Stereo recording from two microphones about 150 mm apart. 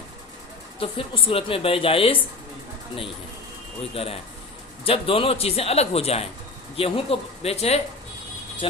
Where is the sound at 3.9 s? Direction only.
40° left (ahead or behind).